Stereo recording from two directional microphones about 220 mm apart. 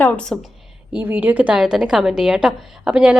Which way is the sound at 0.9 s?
10° right (ahead or behind).